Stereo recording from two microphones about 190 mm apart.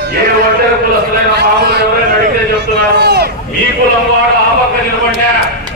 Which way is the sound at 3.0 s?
60° right (ahead or behind).